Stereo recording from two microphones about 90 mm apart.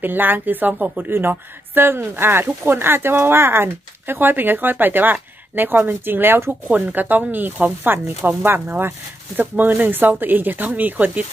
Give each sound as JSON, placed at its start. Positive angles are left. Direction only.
{"t": 0.0, "sound": "a woman's voice", "side_deg": -20}